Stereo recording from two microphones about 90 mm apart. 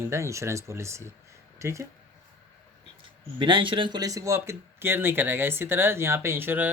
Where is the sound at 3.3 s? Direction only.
65° right (ahead or behind).